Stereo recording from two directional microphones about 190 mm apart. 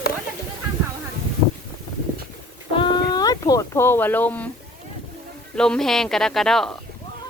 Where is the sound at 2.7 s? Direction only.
25° left (ahead or behind); by 4.4 s 10° left (ahead or behind).